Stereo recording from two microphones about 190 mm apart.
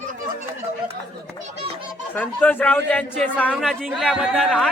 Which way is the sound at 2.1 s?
10° left (ahead or behind).